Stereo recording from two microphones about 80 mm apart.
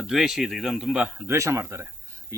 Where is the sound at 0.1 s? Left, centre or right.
Centre.